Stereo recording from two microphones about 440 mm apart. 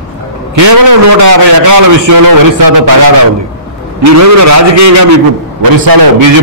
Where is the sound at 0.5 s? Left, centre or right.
Right.